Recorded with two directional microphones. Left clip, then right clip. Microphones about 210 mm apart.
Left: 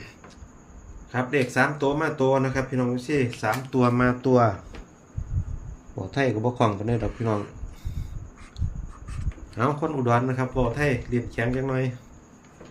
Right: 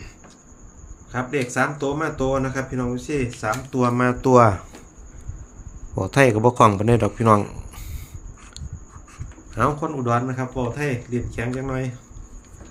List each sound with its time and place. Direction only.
1.1 s speech: centre (ahead or behind); by 4.2 s 15° right (ahead or behind)
4.2 s a man's voice: 35° right (ahead or behind)
6.0 s a man's voice: 40° right (ahead or behind)
9.8 s speech: 5° right (ahead or behind)